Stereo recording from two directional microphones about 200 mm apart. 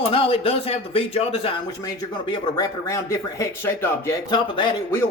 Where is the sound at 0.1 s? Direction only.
25° left (ahead or behind).